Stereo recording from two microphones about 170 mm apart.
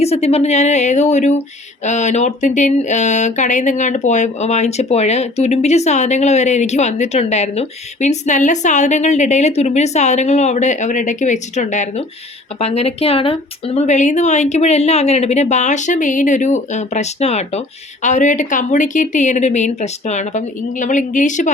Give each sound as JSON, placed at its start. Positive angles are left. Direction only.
{"t": 0.0, "sound": "a woman's voice", "side_deg": 40}